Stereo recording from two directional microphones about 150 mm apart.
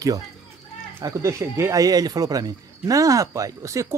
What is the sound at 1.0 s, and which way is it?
Speech, 20° right (ahead or behind).